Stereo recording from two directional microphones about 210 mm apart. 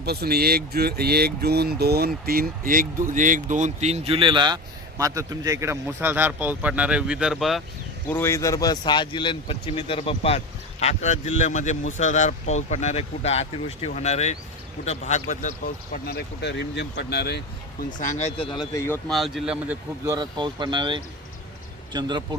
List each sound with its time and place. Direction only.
0.0 s speech: 50° right (ahead or behind); by 7.6 s centre (ahead or behind)
8.0 s speech: 10° left (ahead or behind); by 17.4 s 50° left (ahead or behind)
18.0 s speech: 35° left (ahead or behind); by 18.9 s 15° left (ahead or behind)
19.0 s speech: centre (ahead or behind)
20.1 s speech: 20° right (ahead or behind)